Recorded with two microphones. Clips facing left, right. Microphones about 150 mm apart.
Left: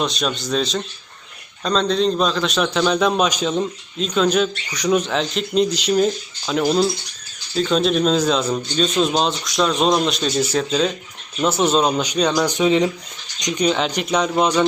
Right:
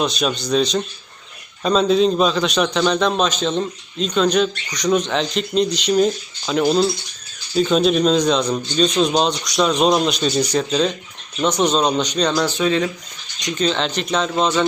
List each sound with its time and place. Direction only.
0.0 s a man's voice: centre (ahead or behind)